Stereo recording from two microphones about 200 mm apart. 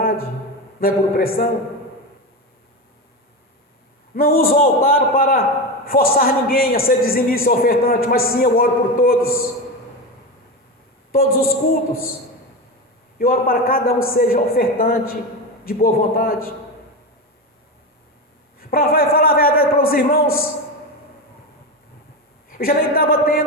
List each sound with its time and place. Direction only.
0.8 s a man's voice: 45° left (ahead or behind)
4.1 s a man's voice: 45° left (ahead or behind)
11.1 s a man's voice: 45° left (ahead or behind)
13.1 s a man's voice: 50° left (ahead or behind)
18.6 s a man's voice: 45° left (ahead or behind)
22.4 s a man's voice: 45° left (ahead or behind)